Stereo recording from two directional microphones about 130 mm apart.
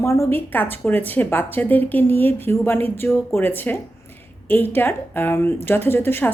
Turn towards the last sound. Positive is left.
turn(degrees=15)  # may be behind; listen again after turning